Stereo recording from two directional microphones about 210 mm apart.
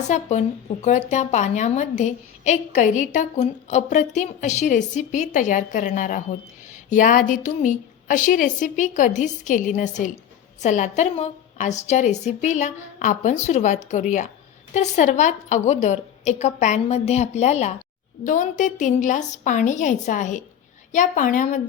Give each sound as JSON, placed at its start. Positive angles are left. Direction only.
{"t": 0.1, "sound": "speech", "side_deg": 35}